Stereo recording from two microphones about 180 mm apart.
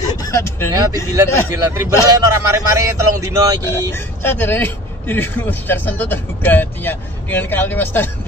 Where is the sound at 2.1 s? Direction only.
20° right (ahead or behind).